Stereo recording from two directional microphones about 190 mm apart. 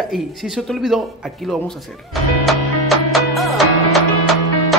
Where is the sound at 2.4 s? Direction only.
Centre (ahead or behind).